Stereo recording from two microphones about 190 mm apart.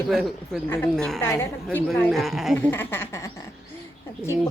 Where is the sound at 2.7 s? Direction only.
10° left (ahead or behind).